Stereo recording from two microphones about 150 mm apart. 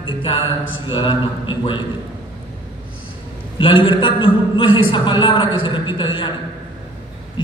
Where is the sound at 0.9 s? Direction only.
35° left (ahead or behind).